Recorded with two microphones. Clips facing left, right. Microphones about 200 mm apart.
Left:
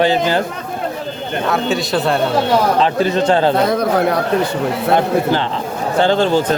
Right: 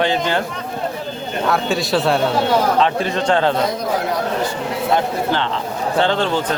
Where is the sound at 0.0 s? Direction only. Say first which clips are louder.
Left 4 dB; 35° left (ahead or behind).